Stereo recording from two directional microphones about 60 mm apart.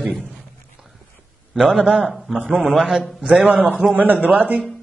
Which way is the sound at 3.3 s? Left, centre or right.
Right.